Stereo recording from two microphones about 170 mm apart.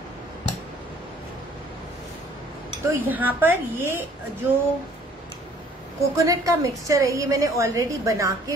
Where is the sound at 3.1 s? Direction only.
10° right (ahead or behind).